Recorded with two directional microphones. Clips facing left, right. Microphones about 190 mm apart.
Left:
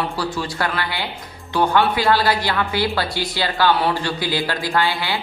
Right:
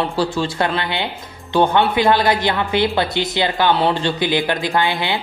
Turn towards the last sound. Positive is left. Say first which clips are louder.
# right 2 dB
turn(degrees=-20)  # may be behind; listen again after turning